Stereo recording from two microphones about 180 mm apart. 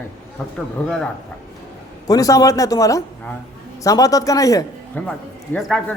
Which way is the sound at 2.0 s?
20° left (ahead or behind).